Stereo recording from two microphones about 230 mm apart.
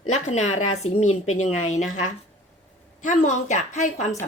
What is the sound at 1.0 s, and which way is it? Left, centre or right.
Speech, left.